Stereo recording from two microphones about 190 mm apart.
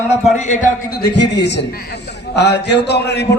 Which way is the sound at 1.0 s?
65° left (ahead or behind).